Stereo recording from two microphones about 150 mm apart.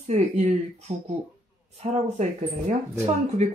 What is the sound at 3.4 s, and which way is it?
Speech, 50° right (ahead or behind).